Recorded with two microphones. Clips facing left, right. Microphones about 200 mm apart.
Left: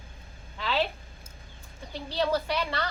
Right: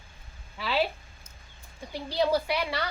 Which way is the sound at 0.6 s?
10° right (ahead or behind).